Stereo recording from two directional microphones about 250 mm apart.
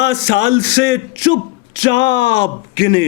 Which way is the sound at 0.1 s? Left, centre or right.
Left.